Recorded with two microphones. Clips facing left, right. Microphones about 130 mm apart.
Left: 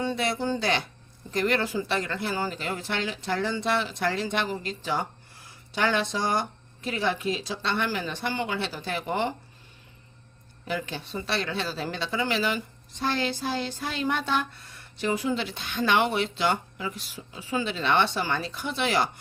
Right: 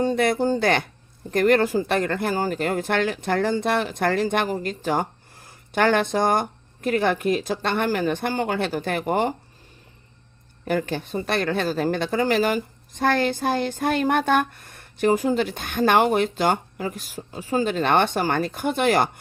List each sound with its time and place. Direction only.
0.0 s speech: 45° right (ahead or behind)
10.7 s speech: 50° right (ahead or behind)